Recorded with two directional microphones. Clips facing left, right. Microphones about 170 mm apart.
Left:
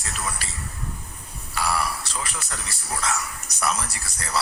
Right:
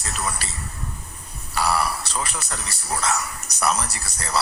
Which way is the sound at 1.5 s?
35° right (ahead or behind).